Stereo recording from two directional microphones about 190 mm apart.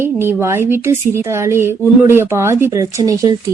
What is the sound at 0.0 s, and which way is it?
A woman's voice, 10° right (ahead or behind).